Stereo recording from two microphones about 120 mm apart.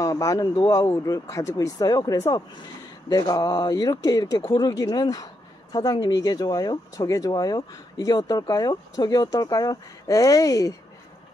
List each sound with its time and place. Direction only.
0.0 s speech: 30° left (ahead or behind)